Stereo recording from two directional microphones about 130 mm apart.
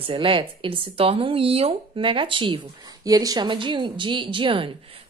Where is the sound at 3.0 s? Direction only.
30° right (ahead or behind).